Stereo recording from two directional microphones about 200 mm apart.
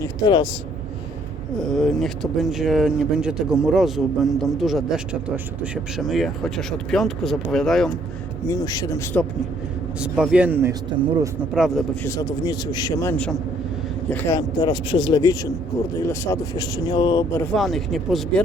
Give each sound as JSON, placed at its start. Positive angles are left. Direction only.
{"t": 0.0, "sound": "speech", "side_deg": 20}
{"t": 1.5, "sound": "speech", "side_deg": 5}
{"t": 8.4, "sound": "a man's voice", "side_deg": 15}
{"t": 10.0, "sound": "speech", "side_deg": -5}
{"t": 11.5, "sound": "speech", "side_deg": 0}
{"t": 12.0, "sound": "a man's voice", "side_deg": 15}
{"t": 17.4, "sound": "speech", "side_deg": 0}